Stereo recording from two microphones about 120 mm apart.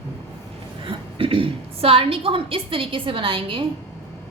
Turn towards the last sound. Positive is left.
turn(degrees=-50)  # may be behind; listen again after turning